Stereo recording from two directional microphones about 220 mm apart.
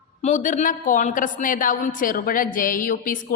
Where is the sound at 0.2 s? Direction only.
35° left (ahead or behind).